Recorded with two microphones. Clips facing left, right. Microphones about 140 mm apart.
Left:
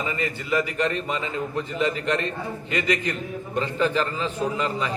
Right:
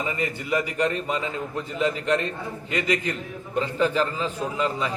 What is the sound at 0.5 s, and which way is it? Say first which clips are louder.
A man's voice: even; 10° right (ahead or behind).